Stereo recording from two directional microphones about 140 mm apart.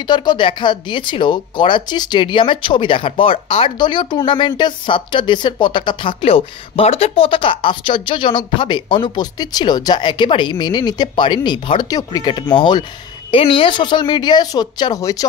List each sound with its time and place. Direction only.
0.0 s speech: 30° left (ahead or behind)